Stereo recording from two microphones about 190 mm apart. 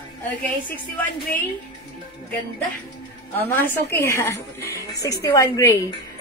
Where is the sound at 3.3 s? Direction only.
10° left (ahead or behind).